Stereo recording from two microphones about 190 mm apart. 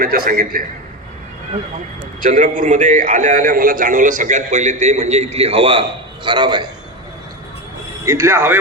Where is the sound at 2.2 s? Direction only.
45° right (ahead or behind); by 6.6 s 25° right (ahead or behind).